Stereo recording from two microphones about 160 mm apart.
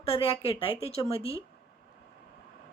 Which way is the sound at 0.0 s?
35° left (ahead or behind).